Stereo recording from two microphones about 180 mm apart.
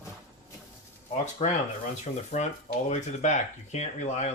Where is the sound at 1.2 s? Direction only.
40° left (ahead or behind).